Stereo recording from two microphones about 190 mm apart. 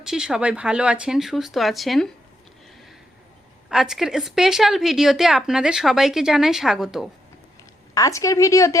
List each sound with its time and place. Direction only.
0.0 s a woman's voice: 5° right (ahead or behind)
3.7 s a woman's voice: centre (ahead or behind)
7.9 s a woman's voice: 15° left (ahead or behind)